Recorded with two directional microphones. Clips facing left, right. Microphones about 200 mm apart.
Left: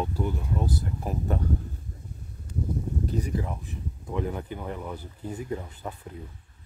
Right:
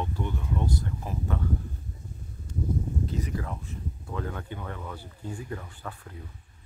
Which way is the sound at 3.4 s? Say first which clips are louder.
Left 3 dB; 15° left (ahead or behind).